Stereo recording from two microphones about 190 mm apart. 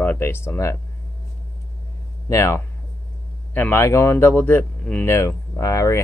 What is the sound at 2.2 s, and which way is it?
Speech, 15° left (ahead or behind).